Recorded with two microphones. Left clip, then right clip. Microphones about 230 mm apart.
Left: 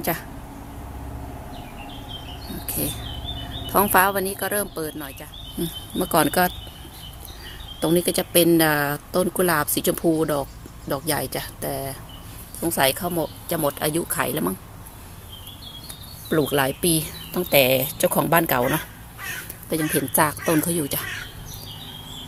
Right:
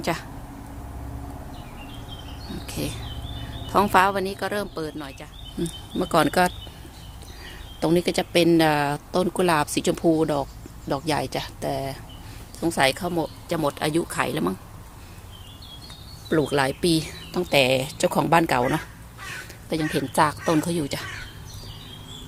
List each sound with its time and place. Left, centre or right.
0.0 s speech: centre
3.7 s speech: centre
7.8 s speech: centre
16.3 s speech: centre